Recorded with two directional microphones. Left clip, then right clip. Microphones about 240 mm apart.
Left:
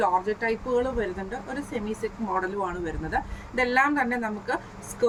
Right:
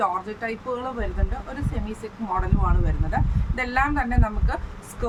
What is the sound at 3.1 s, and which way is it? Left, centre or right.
A woman's voice, centre.